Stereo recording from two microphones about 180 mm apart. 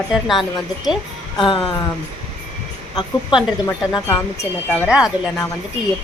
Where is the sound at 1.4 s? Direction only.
25° left (ahead or behind).